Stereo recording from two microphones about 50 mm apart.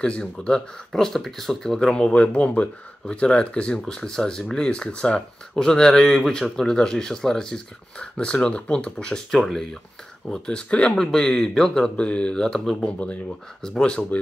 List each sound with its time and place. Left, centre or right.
0.0 s speech: centre
0.9 s speech: centre
11.0 s speech: centre
12.4 s speech: centre
12.8 s speech: left
13.6 s speech: centre